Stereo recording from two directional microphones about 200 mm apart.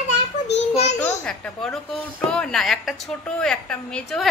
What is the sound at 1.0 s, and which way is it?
A woman's voice, 5° left (ahead or behind).